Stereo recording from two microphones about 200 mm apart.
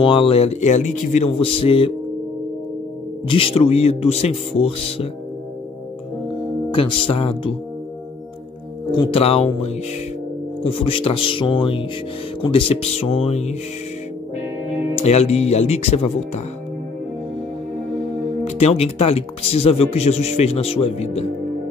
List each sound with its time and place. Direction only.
0.0 s speech: 25° left (ahead or behind)
3.3 s speech: 25° left (ahead or behind)
6.7 s speech: 25° left (ahead or behind)
8.9 s speech: 30° left (ahead or behind)
10.6 s speech: 30° left (ahead or behind)
15.0 s speech: 30° left (ahead or behind)
18.4 s speech: 30° left (ahead or behind)